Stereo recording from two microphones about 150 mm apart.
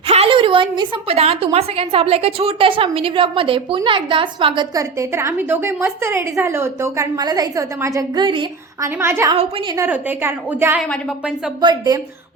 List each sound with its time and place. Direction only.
0.1 s a woman's voice: 40° right (ahead or behind)
8.8 s a woman's voice: 15° right (ahead or behind)
11.6 s a woman's voice: 25° right (ahead or behind)